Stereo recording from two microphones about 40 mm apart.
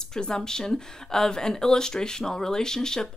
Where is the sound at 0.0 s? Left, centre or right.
Centre.